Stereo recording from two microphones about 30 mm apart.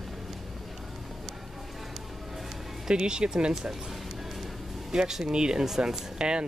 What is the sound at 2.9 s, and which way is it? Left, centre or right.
Speech, right.